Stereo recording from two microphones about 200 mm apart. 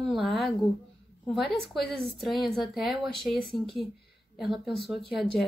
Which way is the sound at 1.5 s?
Centre (ahead or behind).